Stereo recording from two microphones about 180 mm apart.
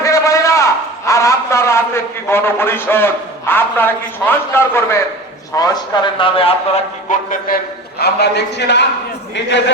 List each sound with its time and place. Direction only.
0.0 s a sound: 15° left (ahead or behind)
5.5 s a man's voice: 20° left (ahead or behind)
7.1 s a man's voice: 50° left (ahead or behind); by 9.7 s 80° left